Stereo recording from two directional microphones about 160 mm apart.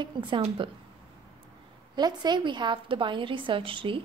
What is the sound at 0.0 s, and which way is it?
Speech, 30° right (ahead or behind).